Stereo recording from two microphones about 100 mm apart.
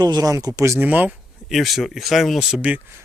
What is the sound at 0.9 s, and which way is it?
Speech, 15° right (ahead or behind).